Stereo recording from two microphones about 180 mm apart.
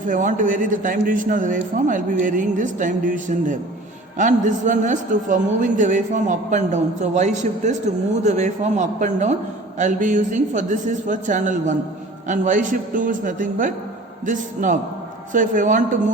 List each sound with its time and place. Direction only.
0.1 s a man's voice: 45° right (ahead or behind)